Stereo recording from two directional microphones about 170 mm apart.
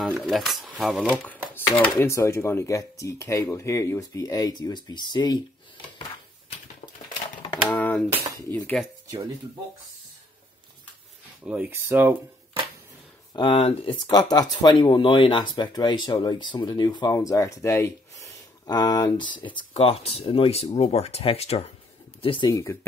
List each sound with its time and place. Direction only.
0.0 s speech: centre (ahead or behind)
1.0 s speech: 10° left (ahead or behind); by 5.4 s 25° left (ahead or behind)
7.7 s typing: 10° left (ahead or behind)
8.5 s speech: 10° left (ahead or behind)
9.0 s a sound: 25° right (ahead or behind)
11.4 s speech: 10° right (ahead or behind)
13.3 s speech: 30° left (ahead or behind)
22.5 s speech: 20° left (ahead or behind)